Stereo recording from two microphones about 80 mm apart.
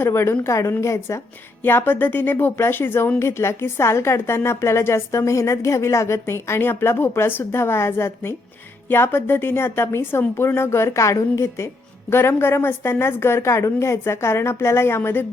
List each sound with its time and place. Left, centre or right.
0.0 s a woman's voice: left
1.6 s a woman's voice: left